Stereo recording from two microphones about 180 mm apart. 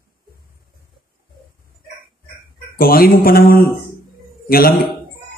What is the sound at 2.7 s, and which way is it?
A man's voice, 55° left (ahead or behind).